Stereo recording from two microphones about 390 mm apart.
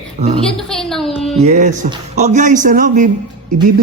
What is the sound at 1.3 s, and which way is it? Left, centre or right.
Speech, centre.